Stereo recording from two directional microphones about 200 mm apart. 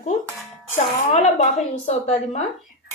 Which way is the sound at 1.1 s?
35° left (ahead or behind).